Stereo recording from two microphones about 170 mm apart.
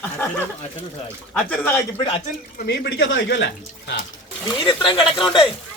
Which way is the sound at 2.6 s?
90° left.